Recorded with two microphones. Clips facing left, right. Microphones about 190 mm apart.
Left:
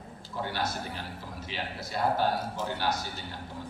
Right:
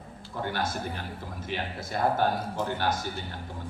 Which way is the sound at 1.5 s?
50° right (ahead or behind).